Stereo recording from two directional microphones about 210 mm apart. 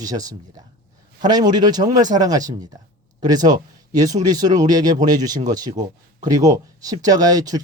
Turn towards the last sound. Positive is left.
turn(degrees=-15)  # may be behind; listen again after turning